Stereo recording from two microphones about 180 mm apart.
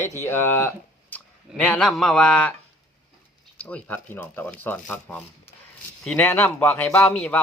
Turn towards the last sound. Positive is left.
turn(degrees=10)  # may be behind; listen again after turning